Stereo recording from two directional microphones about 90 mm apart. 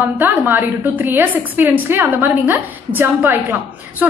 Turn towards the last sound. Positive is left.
turn(degrees=-20)  # may be behind; listen again after turning